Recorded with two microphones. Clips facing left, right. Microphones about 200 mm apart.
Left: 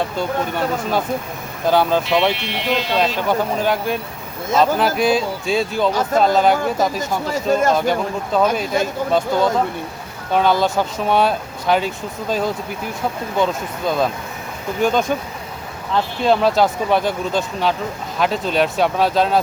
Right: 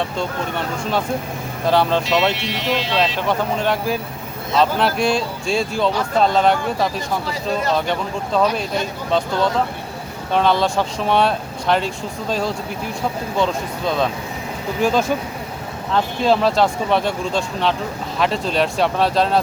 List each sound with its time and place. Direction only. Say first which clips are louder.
0.2 s speech: left 3 dB; 5° left (ahead or behind)
7.3 s speech: left 7 dB; 45° left (ahead or behind)
7.9 s speech: left 3 dB; 5° left (ahead or behind)
16.2 s speech: left 1 dB; centre (ahead or behind)